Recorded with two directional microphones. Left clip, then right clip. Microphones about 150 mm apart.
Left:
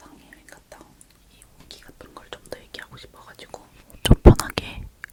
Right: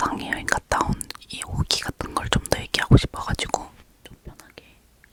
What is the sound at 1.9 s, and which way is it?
Whispering, 70° right (ahead or behind).